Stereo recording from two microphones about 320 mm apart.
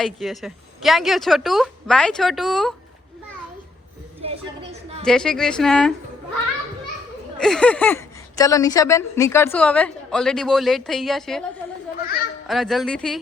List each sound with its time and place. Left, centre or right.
0.0 s speech: centre
4.2 s a sound: centre
5.0 s speech: centre
7.3 s speech: centre
12.5 s speech: centre